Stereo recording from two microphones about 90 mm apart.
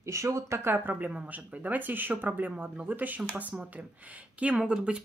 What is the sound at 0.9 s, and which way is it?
Speech, 15° right (ahead or behind).